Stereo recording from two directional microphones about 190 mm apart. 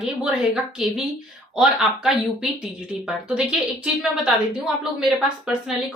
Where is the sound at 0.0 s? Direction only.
5° right (ahead or behind).